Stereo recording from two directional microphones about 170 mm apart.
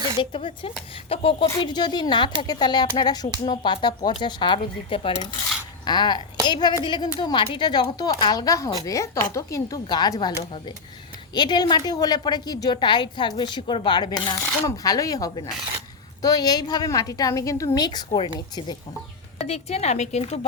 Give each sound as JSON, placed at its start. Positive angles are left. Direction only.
{"t": 0.2, "sound": "a woman's voice", "side_deg": 30}
{"t": 11.3, "sound": "speech", "side_deg": 25}
{"t": 19.4, "sound": "a woman's voice", "side_deg": 40}